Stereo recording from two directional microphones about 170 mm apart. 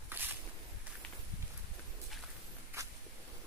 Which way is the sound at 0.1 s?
10° right (ahead or behind).